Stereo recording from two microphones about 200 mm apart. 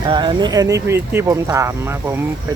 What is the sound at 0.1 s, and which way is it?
Speech, 25° right (ahead or behind).